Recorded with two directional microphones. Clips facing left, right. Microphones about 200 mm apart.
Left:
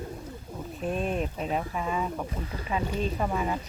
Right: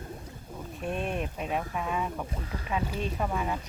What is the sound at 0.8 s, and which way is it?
Speech, centre (ahead or behind).